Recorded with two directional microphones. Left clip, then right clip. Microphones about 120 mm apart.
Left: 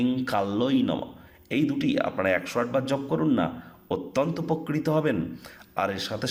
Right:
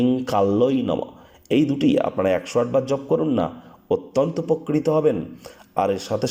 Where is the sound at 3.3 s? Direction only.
25° right (ahead or behind).